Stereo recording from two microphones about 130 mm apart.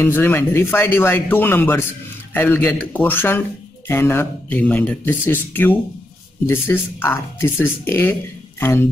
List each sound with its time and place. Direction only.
0.0 s speech: 15° left (ahead or behind)